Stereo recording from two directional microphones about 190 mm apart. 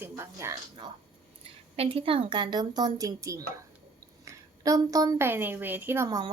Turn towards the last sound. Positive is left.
turn(degrees=-15)  # may be behind; listen again after turning